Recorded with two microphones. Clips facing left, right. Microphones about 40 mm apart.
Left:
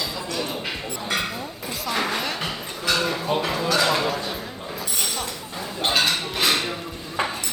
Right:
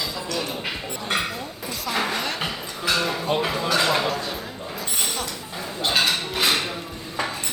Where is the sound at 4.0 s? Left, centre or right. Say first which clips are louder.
Even; centre.